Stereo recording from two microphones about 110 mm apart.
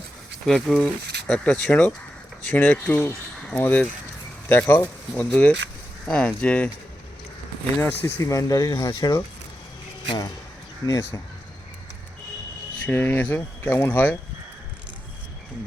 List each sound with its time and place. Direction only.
0.4 s speech: 5° left (ahead or behind)
7.8 s speech: 20° left (ahead or behind)
12.8 s speech: 15° left (ahead or behind)